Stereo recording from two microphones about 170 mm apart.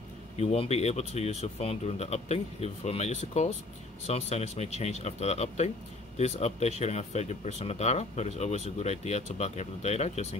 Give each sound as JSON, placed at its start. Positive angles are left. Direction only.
{"t": 0.4, "sound": "speech", "side_deg": 40}